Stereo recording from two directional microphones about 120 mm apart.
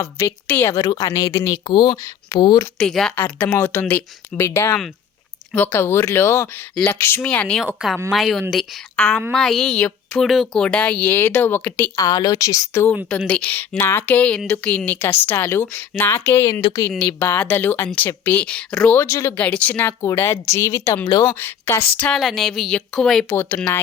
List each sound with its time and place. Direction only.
0.0 s speech: 20° left (ahead or behind)
2.7 s speech: 5° left (ahead or behind)
3.2 s speech: 15° left (ahead or behind)
7.2 s speech: 10° left (ahead or behind)
11.9 s speech: 30° left (ahead or behind)
13.1 s speech: 5° left (ahead or behind)
16.5 s speech: 45° left (ahead or behind)
17.1 s speech: 15° left (ahead or behind)
18.9 s speech: 20° left (ahead or behind)
21.9 s speech: 5° left (ahead or behind)
23.3 s speech: 20° left (ahead or behind)